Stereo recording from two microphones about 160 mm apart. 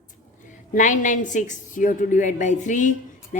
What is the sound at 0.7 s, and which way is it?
A woman's voice, 50° left (ahead or behind).